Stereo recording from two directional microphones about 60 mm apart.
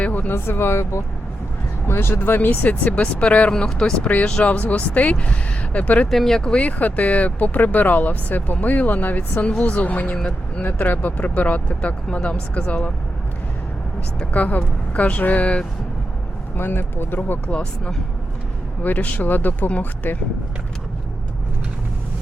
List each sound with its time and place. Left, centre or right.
0.0 s a sound: left
0.3 s speech: left
6.1 s speech: centre; by 12.9 s left
14.3 s speech: left
16.6 s speech: left
17.5 s speech: centre
18.8 s speech: left